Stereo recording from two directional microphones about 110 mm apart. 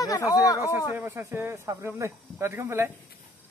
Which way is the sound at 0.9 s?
20° right (ahead or behind).